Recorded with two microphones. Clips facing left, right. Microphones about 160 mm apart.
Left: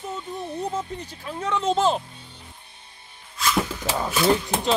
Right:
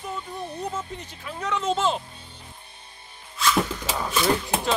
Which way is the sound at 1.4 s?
30° left (ahead or behind).